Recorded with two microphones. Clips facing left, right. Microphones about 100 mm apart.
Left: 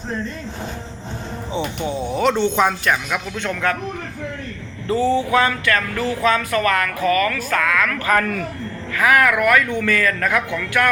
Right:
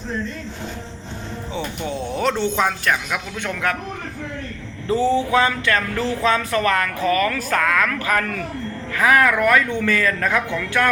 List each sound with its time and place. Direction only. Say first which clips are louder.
1.5 s speech: left 3 dB; 15° left (ahead or behind)
2.1 s a woman's voice: left 3 dB; centre (ahead or behind)
3.5 s a man's voice: left 2 dB; 5° right (ahead or behind)
4.9 s speech: even; 20° right (ahead or behind); by 7.9 s 35° right (ahead or behind)
8.9 s speech: even; 25° right (ahead or behind)